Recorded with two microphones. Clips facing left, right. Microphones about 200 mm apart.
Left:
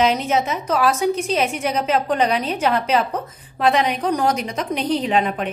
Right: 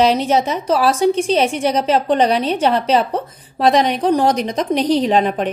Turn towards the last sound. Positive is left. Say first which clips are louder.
# right 4 dB
turn(degrees=-35)  # may be behind; listen again after turning